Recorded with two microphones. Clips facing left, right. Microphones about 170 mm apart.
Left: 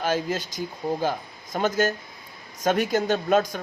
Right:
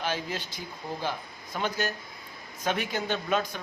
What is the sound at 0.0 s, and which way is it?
A man's voice, 45° left (ahead or behind).